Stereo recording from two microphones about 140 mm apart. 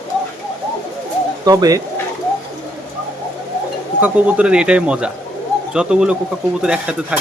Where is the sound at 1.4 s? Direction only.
25° right (ahead or behind).